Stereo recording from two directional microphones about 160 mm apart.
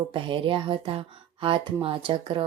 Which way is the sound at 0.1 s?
30° right (ahead or behind).